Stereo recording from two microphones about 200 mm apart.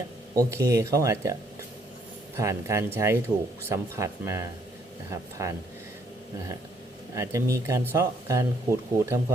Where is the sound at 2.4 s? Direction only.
15° right (ahead or behind).